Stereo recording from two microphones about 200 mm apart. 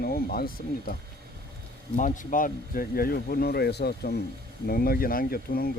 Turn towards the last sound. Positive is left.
turn(degrees=50)  # may be behind; listen again after turning